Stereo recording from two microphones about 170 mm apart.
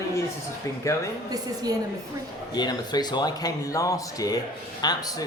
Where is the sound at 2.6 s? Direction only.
25° left (ahead or behind).